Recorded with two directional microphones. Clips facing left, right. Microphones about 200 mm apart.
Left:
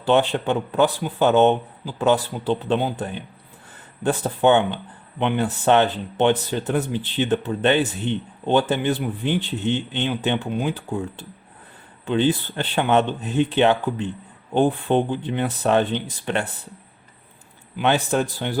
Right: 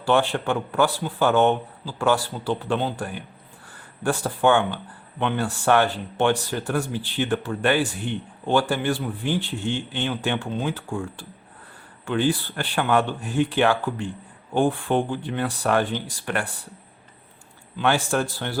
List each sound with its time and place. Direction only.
0.0 s speech: 20° left (ahead or behind)
17.7 s a man's voice: 20° left (ahead or behind)